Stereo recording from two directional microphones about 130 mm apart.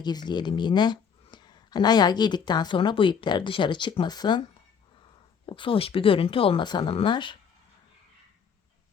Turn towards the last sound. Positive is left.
turn(degrees=40)  # may be behind; listen again after turning